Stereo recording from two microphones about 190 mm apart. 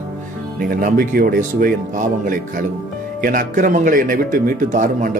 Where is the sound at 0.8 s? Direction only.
50° right (ahead or behind).